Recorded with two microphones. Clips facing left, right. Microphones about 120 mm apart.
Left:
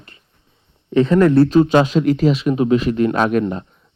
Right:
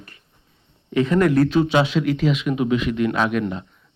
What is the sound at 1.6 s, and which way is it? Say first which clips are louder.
Speech: left 5 dB; 45° left (ahead or behind).